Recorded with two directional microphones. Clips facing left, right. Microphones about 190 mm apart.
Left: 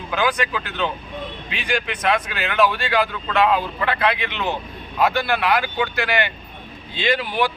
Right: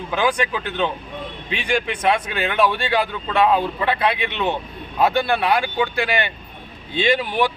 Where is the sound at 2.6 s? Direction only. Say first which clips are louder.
Even; 25° right (ahead or behind).